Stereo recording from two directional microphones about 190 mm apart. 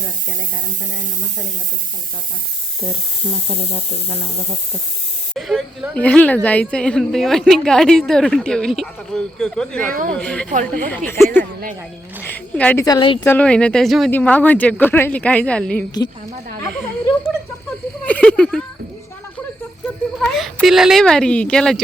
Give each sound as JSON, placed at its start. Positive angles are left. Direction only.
{"t": 5.3, "sound": "a woman's voice", "side_deg": 0}
{"t": 9.9, "sound": "speech", "side_deg": -45}
{"t": 10.2, "sound": "a woman's voice", "side_deg": 5}
{"t": 12.2, "sound": "a sound", "side_deg": 10}
{"t": 12.8, "sound": "speech", "side_deg": 20}
{"t": 13.2, "sound": "speech", "side_deg": 10}
{"t": 16.7, "sound": "a sound", "side_deg": 10}
{"t": 20.2, "sound": "a woman's voice", "side_deg": 0}